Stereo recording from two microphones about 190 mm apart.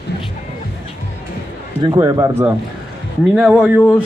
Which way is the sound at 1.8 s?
20° right (ahead or behind).